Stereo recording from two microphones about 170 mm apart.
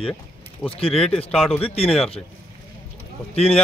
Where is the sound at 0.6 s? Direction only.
35° left (ahead or behind).